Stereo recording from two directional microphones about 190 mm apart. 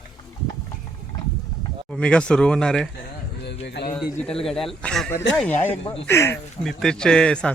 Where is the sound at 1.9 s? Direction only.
5° left (ahead or behind).